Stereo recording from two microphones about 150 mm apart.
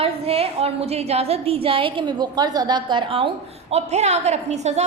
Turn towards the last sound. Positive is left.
turn(degrees=-50)  # may be behind; listen again after turning